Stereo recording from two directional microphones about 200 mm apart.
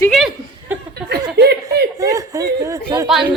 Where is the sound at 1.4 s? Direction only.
55° right (ahead or behind).